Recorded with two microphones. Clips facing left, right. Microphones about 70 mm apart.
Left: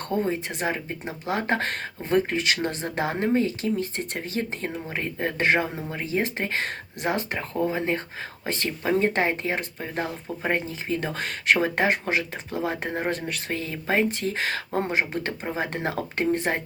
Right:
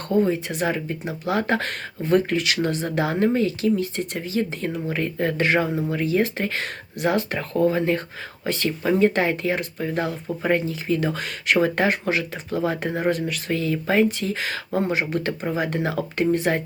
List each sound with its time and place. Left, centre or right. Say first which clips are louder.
0.3 s speech: right 3 dB; left
4.9 s speech: right 6 dB; left
13.0 s speech: right 5 dB; left
14.2 s speech: even; left
14.8 s speech: right 3 dB; left